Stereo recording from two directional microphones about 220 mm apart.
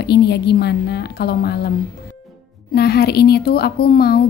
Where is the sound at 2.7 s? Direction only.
45° left (ahead or behind).